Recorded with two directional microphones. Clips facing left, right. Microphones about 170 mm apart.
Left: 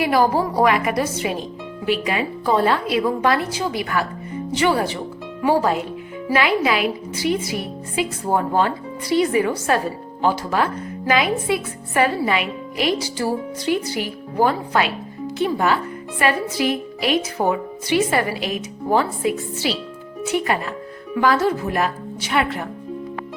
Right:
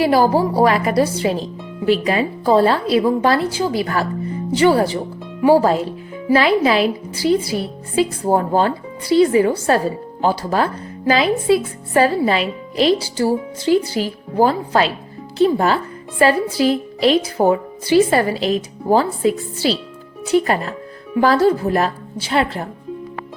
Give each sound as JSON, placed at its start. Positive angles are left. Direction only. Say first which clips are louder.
{"t": 0.0, "sound": "speech", "louder": "right 3 dB", "side_deg": -30}